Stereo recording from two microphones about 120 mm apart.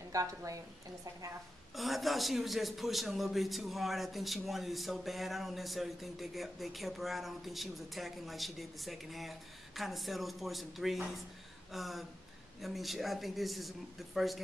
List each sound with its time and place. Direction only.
0.1 s a woman's voice: 25° right (ahead or behind)
1.8 s a man's voice: centre (ahead or behind)